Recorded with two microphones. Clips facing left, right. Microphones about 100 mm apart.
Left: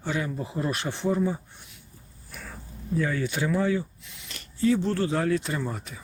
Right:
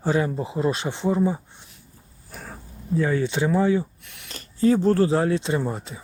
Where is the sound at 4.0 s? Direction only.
60° right (ahead or behind).